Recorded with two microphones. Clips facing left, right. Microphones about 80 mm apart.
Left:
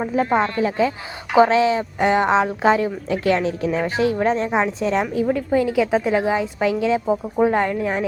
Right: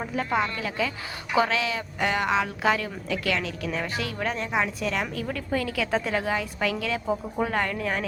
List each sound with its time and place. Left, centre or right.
0.0 s speech: left